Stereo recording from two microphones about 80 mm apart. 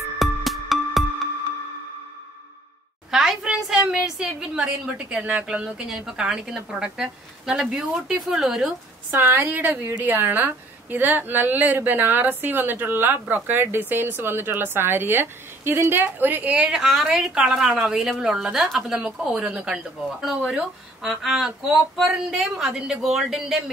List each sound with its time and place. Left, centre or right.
0.2 s music: centre
3.1 s a sound: centre
3.8 s a woman's voice: centre
9.1 s a woman's voice: right
16.7 s speech: centre